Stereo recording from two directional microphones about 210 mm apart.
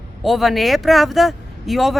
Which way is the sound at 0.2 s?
Centre (ahead or behind).